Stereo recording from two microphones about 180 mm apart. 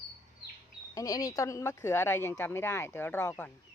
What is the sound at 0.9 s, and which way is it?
Speech, 20° left (ahead or behind).